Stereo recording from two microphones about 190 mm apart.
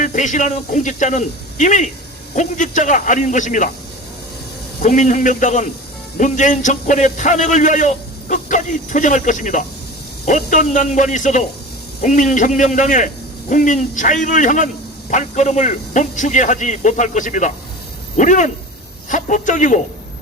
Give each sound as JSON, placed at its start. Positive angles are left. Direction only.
{"t": 0.0, "sound": "a man's voice", "side_deg": 40}
{"t": 4.8, "sound": "a man's voice", "side_deg": 40}